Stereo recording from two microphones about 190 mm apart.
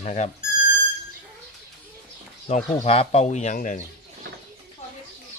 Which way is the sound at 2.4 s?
35° left (ahead or behind).